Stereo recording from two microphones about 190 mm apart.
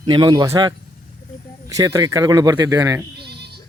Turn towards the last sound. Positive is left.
turn(degrees=-60)  # may be behind; listen again after turning